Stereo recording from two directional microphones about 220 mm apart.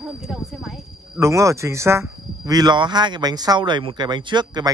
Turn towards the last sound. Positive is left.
turn(degrees=-20)  # may be behind; listen again after turning